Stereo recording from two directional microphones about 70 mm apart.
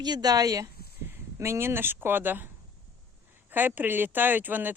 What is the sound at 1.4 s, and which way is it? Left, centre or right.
Speech, right.